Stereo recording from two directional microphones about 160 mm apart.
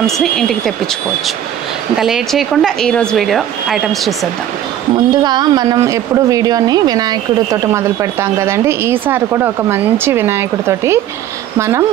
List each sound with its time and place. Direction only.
0.0 s speech: centre (ahead or behind)
2.0 s speech: centre (ahead or behind)
4.9 s a woman's voice: 25° right (ahead or behind)